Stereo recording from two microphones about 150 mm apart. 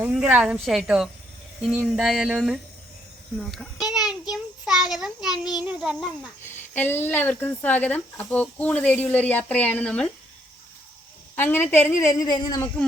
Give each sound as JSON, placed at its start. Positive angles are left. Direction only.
{"t": 0.0, "sound": "a woman's voice", "side_deg": -10}
{"t": 4.3, "sound": "child singing", "side_deg": -5}
{"t": 6.4, "sound": "speech", "side_deg": 15}
{"t": 11.3, "sound": "speech", "side_deg": 15}